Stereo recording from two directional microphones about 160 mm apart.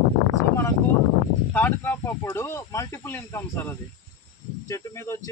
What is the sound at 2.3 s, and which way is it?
A man's voice, 15° left (ahead or behind).